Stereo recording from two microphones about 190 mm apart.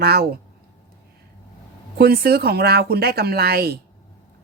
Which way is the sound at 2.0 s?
55° right (ahead or behind).